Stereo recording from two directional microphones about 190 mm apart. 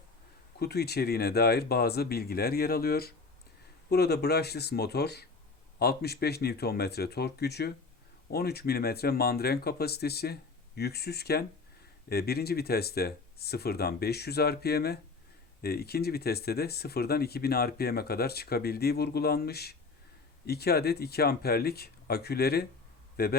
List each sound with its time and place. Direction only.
0.6 s a man's voice: 55° left (ahead or behind)